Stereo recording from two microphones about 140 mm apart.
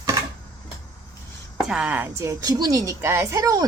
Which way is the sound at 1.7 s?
10° right (ahead or behind).